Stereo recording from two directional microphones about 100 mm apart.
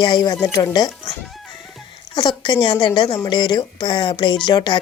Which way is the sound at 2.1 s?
45° left (ahead or behind).